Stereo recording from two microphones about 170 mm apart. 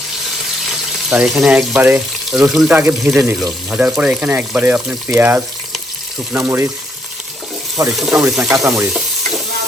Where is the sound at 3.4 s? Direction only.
Centre (ahead or behind).